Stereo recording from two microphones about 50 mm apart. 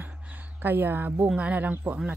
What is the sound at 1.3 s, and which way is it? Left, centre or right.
Speech, right.